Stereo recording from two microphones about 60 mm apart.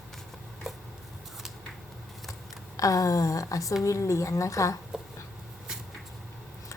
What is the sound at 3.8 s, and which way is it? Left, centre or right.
Speech, left.